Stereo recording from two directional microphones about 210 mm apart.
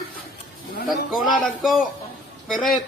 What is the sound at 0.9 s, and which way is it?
Speech, centre (ahead or behind).